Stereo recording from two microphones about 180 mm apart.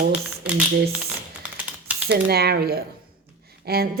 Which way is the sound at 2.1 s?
60° right (ahead or behind).